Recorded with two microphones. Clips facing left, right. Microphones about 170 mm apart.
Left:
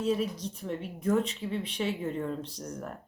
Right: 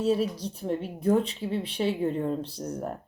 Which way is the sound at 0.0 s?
35° right (ahead or behind).